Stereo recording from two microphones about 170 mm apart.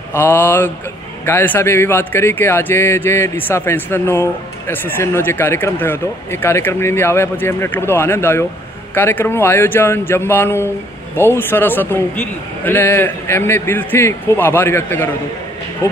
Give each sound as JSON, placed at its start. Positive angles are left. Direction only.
{"t": 0.1, "sound": "a man's voice", "side_deg": 15}